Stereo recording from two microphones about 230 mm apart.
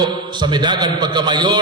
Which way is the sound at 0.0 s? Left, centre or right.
Centre.